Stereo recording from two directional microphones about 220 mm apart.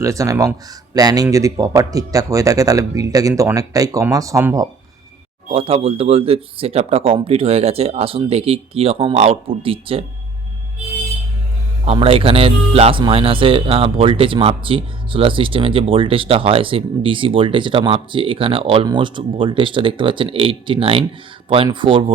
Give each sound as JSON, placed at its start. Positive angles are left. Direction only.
{"t": 0.0, "sound": "speech", "side_deg": -15}
{"t": 5.5, "sound": "speech", "side_deg": -25}
{"t": 11.9, "sound": "speech", "side_deg": -25}